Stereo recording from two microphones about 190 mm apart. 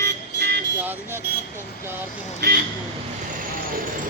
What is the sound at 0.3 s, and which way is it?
Vehicle, 55° right (ahead or behind).